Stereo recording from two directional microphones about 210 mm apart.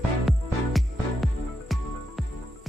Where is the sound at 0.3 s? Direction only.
Centre (ahead or behind).